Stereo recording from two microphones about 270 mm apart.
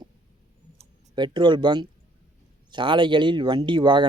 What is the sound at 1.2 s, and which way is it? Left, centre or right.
Speech, centre.